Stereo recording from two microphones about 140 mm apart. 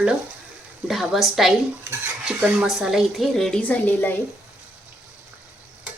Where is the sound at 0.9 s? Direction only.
Centre (ahead or behind).